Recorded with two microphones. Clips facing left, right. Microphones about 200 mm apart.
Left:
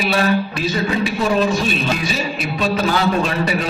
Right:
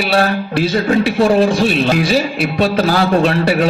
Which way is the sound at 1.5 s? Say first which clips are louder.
Right 6 dB; 75° right (ahead or behind).